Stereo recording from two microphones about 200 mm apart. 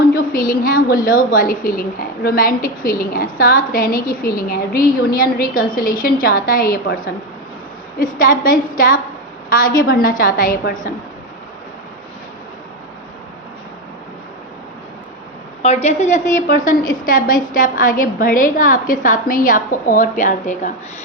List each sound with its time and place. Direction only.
0.1 s a woman's voice: 45° left (ahead or behind)
15.6 s a woman's voice: 35° left (ahead or behind)